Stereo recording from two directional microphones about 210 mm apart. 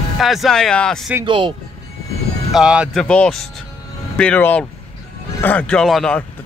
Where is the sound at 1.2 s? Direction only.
25° right (ahead or behind).